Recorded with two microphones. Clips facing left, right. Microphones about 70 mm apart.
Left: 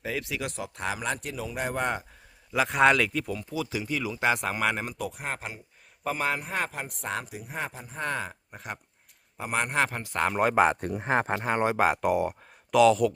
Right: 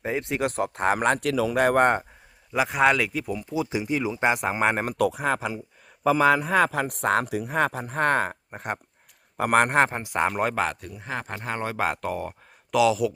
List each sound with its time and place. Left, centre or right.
0.0 s speech: right
1.3 s speech: right
2.5 s speech: centre
3.5 s speech: right
4.6 s speech: right
4.9 s a man's voice: right
6.9 s speech: right
10.0 s speech: centre
10.5 s speech: centre
10.8 s speech: left
11.3 s speech: centre
12.7 s speech: centre